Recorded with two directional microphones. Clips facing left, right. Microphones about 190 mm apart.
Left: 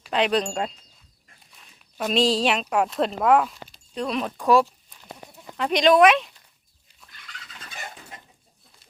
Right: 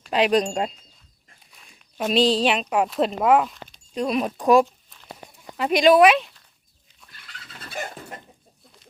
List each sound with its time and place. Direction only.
0.1 s speech: 10° right (ahead or behind)
2.0 s speech: 5° right (ahead or behind)
7.2 s dog: 35° right (ahead or behind)
7.7 s dog: 50° right (ahead or behind)